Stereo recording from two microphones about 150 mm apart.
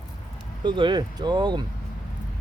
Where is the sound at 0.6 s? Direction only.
30° right (ahead or behind).